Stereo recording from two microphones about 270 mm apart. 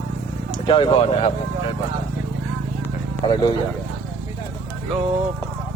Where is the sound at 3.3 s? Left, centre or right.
Centre.